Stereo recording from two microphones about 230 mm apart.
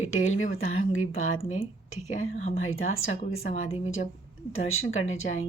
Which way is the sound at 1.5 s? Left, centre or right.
Left.